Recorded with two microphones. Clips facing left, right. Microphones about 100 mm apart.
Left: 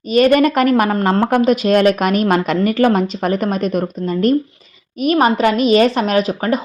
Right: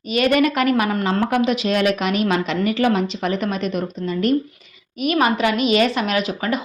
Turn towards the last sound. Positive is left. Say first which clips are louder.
# left 5 dB
turn(degrees=40)  # may be behind; listen again after turning